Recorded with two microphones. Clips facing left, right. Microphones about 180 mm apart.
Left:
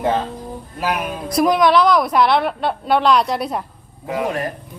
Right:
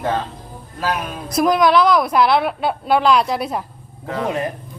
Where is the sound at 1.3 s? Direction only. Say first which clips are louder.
Even; centre (ahead or behind).